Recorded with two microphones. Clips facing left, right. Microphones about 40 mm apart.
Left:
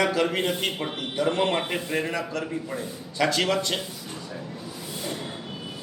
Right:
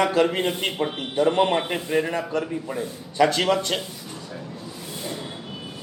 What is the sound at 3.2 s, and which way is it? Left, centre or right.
Speech, right.